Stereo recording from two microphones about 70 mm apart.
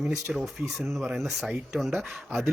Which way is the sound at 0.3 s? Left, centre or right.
Centre.